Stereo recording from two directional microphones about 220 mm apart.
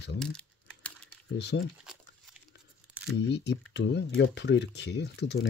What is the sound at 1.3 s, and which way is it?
Speech, 50° left (ahead or behind).